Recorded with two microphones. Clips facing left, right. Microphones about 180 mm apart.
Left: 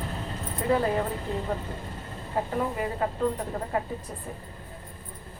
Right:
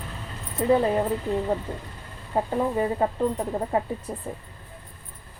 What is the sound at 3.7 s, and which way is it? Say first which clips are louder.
Speech: right 4 dB; 25° right (ahead or behind).